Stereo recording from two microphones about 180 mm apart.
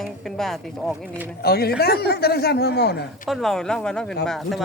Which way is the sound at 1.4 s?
60° left (ahead or behind).